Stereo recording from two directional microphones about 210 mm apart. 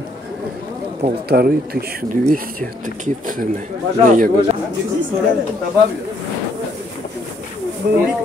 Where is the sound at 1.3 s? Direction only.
45° right (ahead or behind).